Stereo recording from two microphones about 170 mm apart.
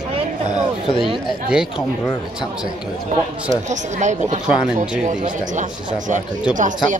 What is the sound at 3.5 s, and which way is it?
Speech, 45° right (ahead or behind).